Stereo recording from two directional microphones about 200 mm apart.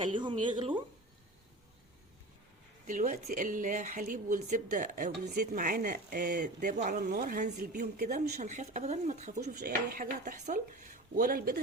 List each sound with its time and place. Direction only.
0.1 s a woman's voice: 25° right (ahead or behind)
2.8 s speech: 40° right (ahead or behind)
9.4 s speech: 50° right (ahead or behind)